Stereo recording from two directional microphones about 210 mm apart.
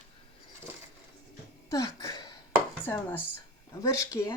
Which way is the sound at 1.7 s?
15° left (ahead or behind).